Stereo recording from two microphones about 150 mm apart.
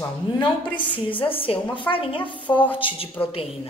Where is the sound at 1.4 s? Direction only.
35° left (ahead or behind).